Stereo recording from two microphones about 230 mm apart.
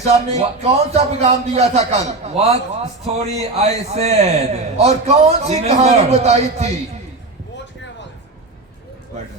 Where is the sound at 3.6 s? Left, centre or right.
Right.